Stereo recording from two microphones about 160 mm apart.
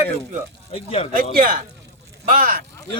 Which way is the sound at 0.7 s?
35° left (ahead or behind).